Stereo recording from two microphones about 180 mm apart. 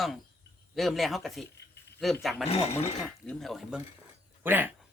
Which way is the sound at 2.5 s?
35° left (ahead or behind).